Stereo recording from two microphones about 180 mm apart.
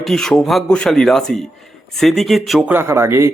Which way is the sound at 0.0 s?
5° left (ahead or behind).